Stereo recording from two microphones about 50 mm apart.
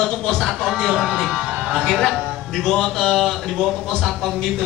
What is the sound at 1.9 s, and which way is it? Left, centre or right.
Speech, centre.